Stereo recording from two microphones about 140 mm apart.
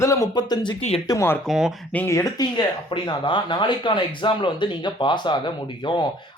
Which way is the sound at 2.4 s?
30° left (ahead or behind).